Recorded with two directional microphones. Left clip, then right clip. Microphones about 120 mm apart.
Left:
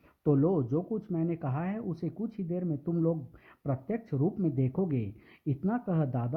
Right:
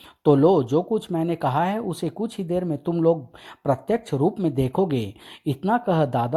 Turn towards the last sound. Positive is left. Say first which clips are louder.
# right 13 dB
turn(degrees=-35)  # may be behind; listen again after turning